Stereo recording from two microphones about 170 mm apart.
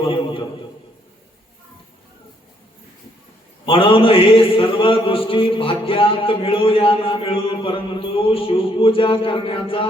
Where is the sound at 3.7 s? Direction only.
30° left (ahead or behind).